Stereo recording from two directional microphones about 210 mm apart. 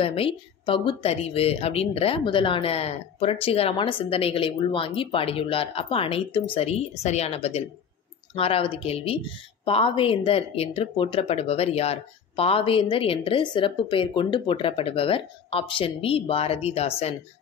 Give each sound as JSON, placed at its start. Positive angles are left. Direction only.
{"t": 0.0, "sound": "speech", "side_deg": 25}